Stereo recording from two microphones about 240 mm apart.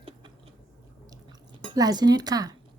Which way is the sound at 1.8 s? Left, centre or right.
Centre.